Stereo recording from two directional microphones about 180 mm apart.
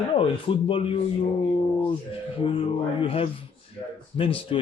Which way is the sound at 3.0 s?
30° left (ahead or behind).